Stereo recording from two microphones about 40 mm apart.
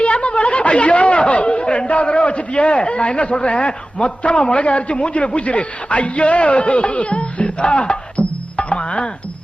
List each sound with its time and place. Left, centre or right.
0.0 s speech: left